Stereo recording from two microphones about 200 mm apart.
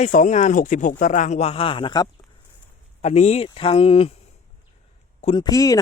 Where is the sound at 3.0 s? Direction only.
35° left (ahead or behind).